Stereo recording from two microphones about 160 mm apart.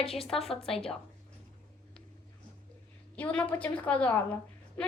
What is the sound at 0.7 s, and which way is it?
Speech, 5° left (ahead or behind).